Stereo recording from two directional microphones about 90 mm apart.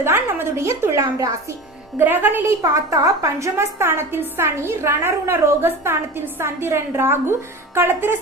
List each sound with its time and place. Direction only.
0.0 s a sound: 25° right (ahead or behind)
2.0 s a woman's voice: 20° right (ahead or behind)
2.6 s a woman's voice: 40° right (ahead or behind)